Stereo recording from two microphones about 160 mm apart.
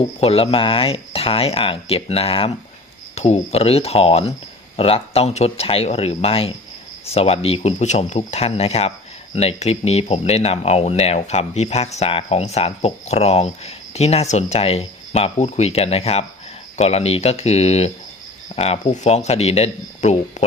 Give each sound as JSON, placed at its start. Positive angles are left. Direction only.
{"t": 0.2, "sound": "speech", "side_deg": 40}